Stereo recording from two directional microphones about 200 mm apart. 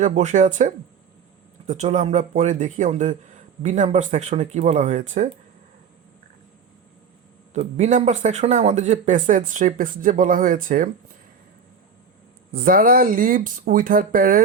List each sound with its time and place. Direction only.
0.0 s speech: 35° right (ahead or behind)
7.5 s speech: 35° right (ahead or behind)
12.5 s speech: 45° right (ahead or behind)